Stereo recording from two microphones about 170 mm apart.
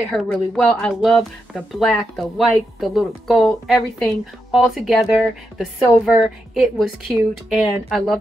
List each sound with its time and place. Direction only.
0.1 s speech: 5° left (ahead or behind)